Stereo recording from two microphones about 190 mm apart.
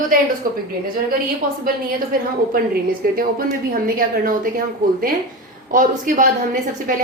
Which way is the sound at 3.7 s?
45° right (ahead or behind).